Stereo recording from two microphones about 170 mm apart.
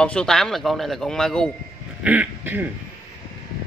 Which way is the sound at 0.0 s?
5° left (ahead or behind).